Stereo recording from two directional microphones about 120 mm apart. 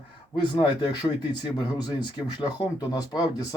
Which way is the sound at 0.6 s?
40° left (ahead or behind).